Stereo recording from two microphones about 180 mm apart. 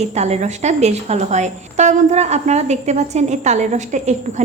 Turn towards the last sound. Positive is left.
turn(degrees=-40)  # may be behind; listen again after turning